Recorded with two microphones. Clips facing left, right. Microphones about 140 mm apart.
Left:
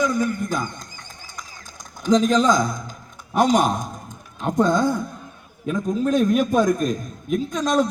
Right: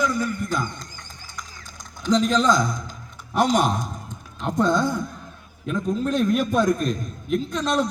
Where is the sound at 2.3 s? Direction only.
10° left (ahead or behind).